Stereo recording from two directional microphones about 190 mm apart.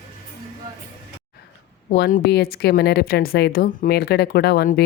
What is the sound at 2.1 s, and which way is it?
Speech, 50° left (ahead or behind).